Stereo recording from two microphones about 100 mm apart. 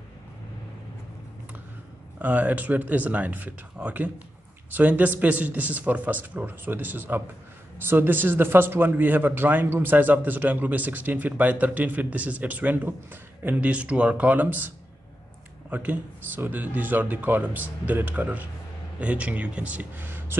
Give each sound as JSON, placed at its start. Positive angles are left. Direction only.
{"t": 2.1, "sound": "a man's voice", "side_deg": -15}
{"t": 15.7, "sound": "a man's voice", "side_deg": -15}